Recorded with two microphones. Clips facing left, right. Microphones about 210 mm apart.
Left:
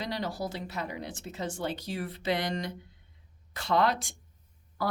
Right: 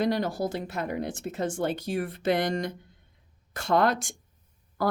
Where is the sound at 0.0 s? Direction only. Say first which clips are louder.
Right 7 dB; 50° right (ahead or behind).